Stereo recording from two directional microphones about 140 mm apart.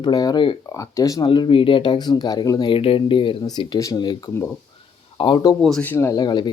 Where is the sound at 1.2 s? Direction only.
35° left (ahead or behind).